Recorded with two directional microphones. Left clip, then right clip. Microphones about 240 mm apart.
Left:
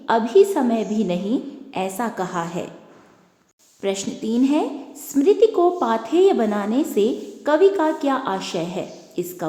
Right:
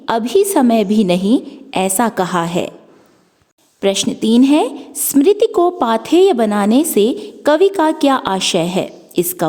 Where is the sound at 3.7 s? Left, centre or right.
Right.